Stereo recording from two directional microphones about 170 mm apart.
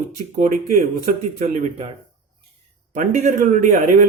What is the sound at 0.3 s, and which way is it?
Speech, 50° right (ahead or behind).